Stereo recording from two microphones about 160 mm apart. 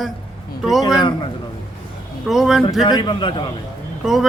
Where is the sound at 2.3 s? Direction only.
Centre (ahead or behind).